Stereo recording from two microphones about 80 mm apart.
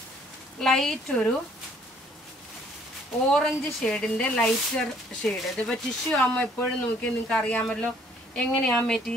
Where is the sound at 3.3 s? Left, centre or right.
Centre.